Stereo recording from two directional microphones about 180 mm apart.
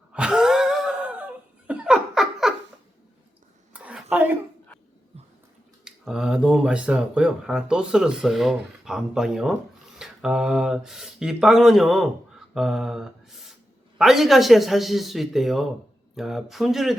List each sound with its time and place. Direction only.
0.1 s laughter: 5° right (ahead or behind)
3.7 s a sound: 5° right (ahead or behind)
5.8 s speech: 5° right (ahead or behind)
12.5 s mantra: centre (ahead or behind)
14.0 s speech: centre (ahead or behind)